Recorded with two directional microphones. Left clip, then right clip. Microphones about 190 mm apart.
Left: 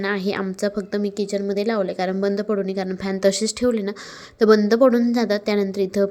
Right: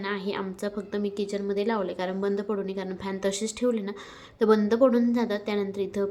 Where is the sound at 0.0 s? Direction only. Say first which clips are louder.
Left 7 dB; 35° left (ahead or behind).